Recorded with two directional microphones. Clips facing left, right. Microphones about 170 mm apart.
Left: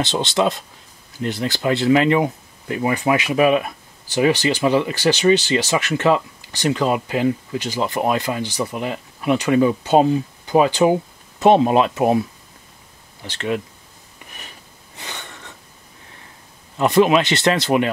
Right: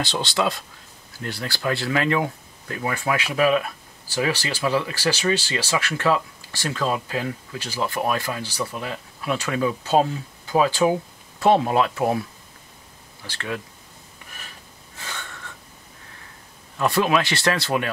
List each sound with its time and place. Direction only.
0.0 s speech: 20° left (ahead or behind)
15.0 s wheeze: 20° left (ahead or behind)
16.7 s speech: 20° left (ahead or behind)